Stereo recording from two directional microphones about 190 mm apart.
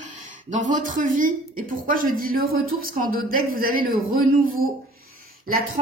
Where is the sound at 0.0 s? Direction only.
40° right (ahead or behind).